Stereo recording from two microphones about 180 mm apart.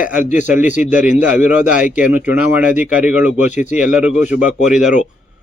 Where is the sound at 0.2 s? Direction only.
45° left (ahead or behind).